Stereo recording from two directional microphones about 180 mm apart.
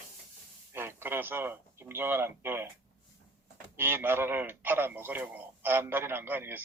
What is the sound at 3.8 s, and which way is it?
Speech, 10° right (ahead or behind).